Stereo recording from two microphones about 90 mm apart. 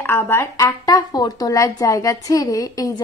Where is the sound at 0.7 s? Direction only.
50° left (ahead or behind).